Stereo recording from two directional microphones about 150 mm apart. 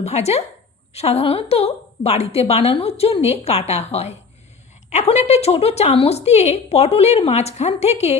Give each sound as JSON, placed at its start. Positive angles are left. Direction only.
{"t": 0.0, "sound": "a woman's voice", "side_deg": 45}